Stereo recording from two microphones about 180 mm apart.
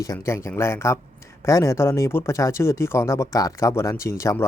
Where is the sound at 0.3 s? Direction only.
15° left (ahead or behind).